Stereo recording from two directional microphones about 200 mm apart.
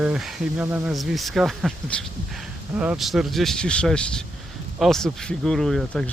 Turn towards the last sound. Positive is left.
turn(degrees=0)  # may be behind; listen again after turning